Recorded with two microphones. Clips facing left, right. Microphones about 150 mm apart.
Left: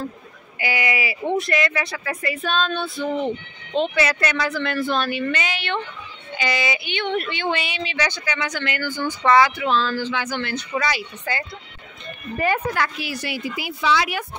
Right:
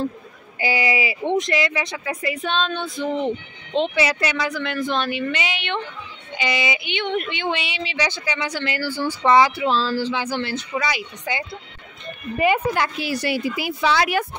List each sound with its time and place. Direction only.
0.6 s speech: 30° right (ahead or behind)
10.7 s speech: 10° right (ahead or behind)
12.7 s speech: 25° right (ahead or behind); by 14.2 s 45° right (ahead or behind)